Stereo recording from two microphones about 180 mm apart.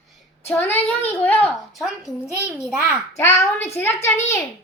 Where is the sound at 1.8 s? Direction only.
Centre (ahead or behind).